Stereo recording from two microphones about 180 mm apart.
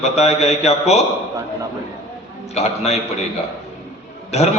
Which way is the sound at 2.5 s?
35° left (ahead or behind).